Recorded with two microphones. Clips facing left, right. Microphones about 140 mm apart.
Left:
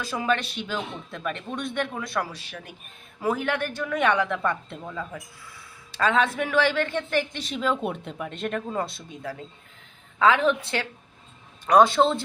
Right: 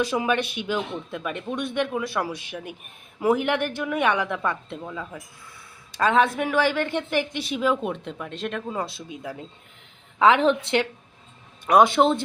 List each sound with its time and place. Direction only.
0.0 s a man's voice: 15° right (ahead or behind)
5.9 s a man's voice: 15° right (ahead or behind)
7.9 s speech: 5° left (ahead or behind)
9.0 s a man's voice: 15° right (ahead or behind)
10.2 s a woman's voice: 25° right (ahead or behind)
11.6 s a man's voice: 15° right (ahead or behind)